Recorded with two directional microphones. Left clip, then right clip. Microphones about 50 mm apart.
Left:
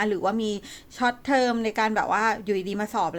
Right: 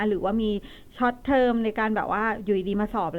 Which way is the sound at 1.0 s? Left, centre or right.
Centre.